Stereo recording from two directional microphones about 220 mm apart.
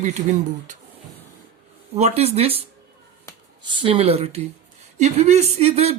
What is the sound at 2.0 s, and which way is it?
Speech, 30° right (ahead or behind).